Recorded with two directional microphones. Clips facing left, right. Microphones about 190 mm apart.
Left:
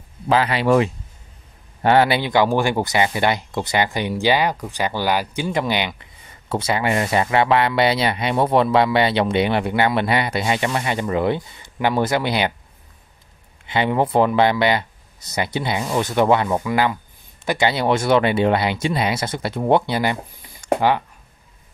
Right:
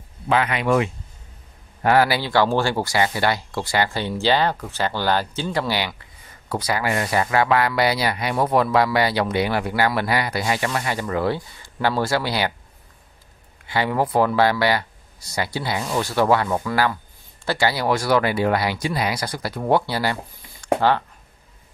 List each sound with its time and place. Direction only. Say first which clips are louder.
0.3 s speech: left 3 dB; 30° left (ahead or behind)
13.7 s speech: left 2 dB; 20° left (ahead or behind)
20.6 s a sound: left 1 dB; 10° left (ahead or behind)